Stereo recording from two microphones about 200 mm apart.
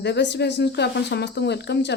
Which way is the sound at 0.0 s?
60° left (ahead or behind).